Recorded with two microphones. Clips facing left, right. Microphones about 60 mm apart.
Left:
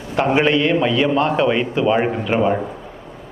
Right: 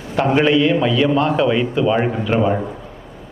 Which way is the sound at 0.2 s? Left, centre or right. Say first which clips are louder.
Right 1 dB; centre.